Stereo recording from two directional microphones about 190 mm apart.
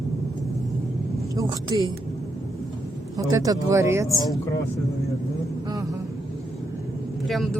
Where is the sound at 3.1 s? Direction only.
20° right (ahead or behind).